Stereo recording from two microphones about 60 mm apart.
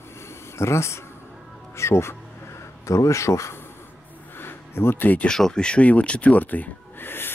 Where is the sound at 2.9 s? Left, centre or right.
Left.